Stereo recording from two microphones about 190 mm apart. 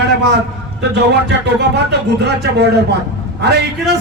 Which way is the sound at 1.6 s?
60° right (ahead or behind).